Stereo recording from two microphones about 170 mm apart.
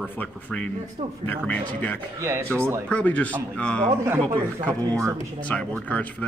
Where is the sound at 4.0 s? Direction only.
15° right (ahead or behind).